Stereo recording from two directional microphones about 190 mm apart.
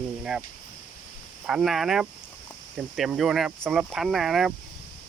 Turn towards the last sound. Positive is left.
turn(degrees=0)  # may be behind; listen again after turning